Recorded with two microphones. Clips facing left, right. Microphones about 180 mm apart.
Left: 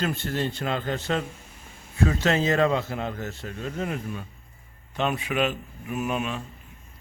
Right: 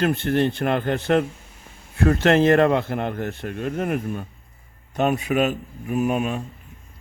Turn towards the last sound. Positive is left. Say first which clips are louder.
# right 6 dB
turn(degrees=-45)  # may be behind; listen again after turning